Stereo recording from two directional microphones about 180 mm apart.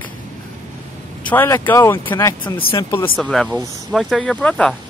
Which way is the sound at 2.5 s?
30° left (ahead or behind).